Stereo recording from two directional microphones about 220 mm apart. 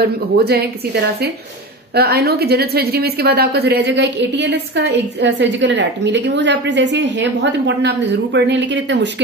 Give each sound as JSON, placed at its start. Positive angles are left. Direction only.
{"t": 0.0, "sound": "a woman's voice", "side_deg": -45}